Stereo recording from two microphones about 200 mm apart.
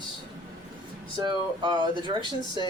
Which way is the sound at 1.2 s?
20° right (ahead or behind).